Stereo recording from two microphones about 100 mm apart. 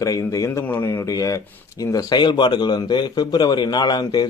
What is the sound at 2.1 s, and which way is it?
A man's voice, 50° left (ahead or behind).